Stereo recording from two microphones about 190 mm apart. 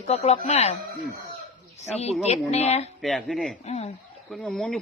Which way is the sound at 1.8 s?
35° left (ahead or behind).